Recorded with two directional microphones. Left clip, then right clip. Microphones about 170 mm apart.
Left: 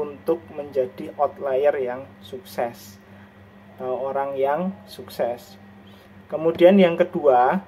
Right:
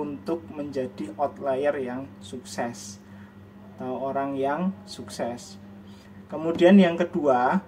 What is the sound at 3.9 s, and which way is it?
A man's voice, 10° left (ahead or behind).